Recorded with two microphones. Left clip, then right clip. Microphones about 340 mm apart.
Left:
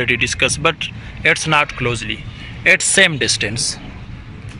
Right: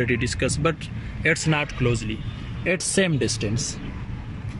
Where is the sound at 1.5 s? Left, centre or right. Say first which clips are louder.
Left 8 dB; left.